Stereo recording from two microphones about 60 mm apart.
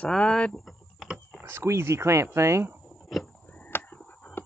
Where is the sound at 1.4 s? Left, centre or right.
Right.